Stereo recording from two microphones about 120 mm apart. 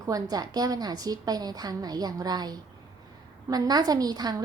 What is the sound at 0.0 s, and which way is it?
A woman's voice, 30° right (ahead or behind).